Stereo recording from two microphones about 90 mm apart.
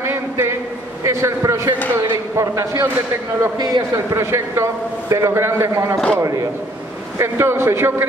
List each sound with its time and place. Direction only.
0.0 s a sound: 30° right (ahead or behind)
1.0 s a man's voice: 35° right (ahead or behind)
3.5 s a man's voice: 50° right (ahead or behind)
3.9 s a man's voice: 30° right (ahead or behind)